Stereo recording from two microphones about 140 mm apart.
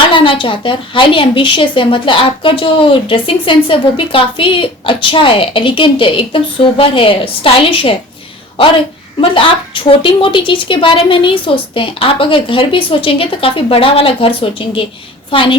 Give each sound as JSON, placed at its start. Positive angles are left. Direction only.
{"t": 0.1, "sound": "a woman's voice", "side_deg": 40}
{"t": 9.2, "sound": "a woman's voice", "side_deg": 40}